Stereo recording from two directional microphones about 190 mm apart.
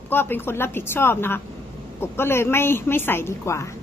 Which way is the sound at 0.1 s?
10° left (ahead or behind).